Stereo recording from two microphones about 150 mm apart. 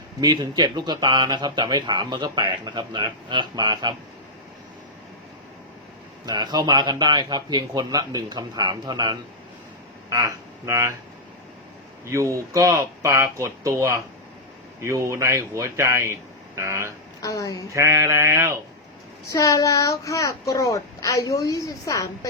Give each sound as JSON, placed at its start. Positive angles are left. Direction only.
{"t": 0.2, "sound": "speech", "side_deg": -25}
{"t": 6.2, "sound": "speech", "side_deg": -25}
{"t": 12.1, "sound": "speech", "side_deg": -20}
{"t": 17.2, "sound": "a child's voice", "side_deg": 20}
{"t": 17.7, "sound": "speech", "side_deg": -20}
{"t": 19.3, "sound": "a child's voice", "side_deg": 20}